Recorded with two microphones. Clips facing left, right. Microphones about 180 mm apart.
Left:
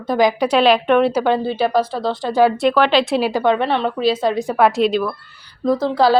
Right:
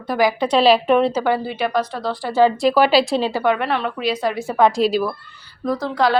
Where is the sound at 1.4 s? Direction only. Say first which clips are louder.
Left 4 dB; 30° left (ahead or behind).